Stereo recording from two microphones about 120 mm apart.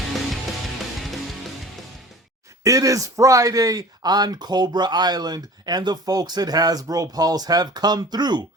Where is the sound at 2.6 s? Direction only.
25° right (ahead or behind).